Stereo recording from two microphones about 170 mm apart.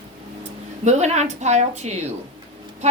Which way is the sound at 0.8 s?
40° right (ahead or behind).